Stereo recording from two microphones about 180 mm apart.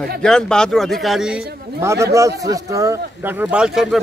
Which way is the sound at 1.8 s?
15° right (ahead or behind).